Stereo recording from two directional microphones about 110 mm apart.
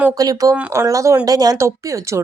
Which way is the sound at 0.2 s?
35° right (ahead or behind).